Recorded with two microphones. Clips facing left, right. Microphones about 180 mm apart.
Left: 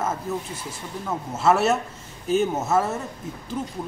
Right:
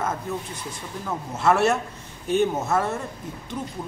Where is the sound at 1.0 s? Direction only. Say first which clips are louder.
Left 1 dB; 5° left (ahead or behind).